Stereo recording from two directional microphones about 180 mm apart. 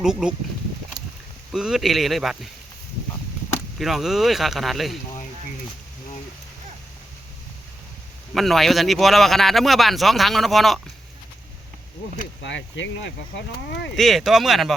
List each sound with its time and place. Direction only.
0.0 s speech: 5° right (ahead or behind)
1.5 s speech: centre (ahead or behind)
3.8 s speech: centre (ahead or behind)
8.3 s speech: centre (ahead or behind)
12.1 s speech: 85° left
13.9 s speech: centre (ahead or behind)